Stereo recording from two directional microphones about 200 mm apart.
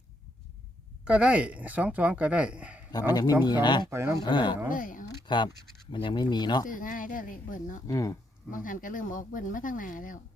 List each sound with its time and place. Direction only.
1.0 s speech: 5° right (ahead or behind)
3.1 s speech: 20° left (ahead or behind)
3.8 s speech: 15° right (ahead or behind)
4.2 s speech: 20° left (ahead or behind)
4.7 s speech: 40° left (ahead or behind)
5.0 s a sound: 25° left (ahead or behind)
5.9 s speech: 25° left (ahead or behind)
6.7 s speech: 40° left (ahead or behind)
7.9 s speech: 15° left (ahead or behind)
8.4 s speech: 40° left (ahead or behind)